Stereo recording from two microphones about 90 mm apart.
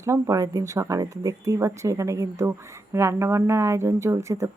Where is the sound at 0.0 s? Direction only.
35° right (ahead or behind).